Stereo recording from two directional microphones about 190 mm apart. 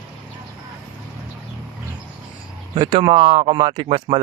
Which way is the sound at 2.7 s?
25° right (ahead or behind).